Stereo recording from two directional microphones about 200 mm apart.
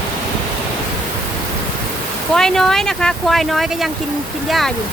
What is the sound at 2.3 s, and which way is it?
Speech, 5° left (ahead or behind).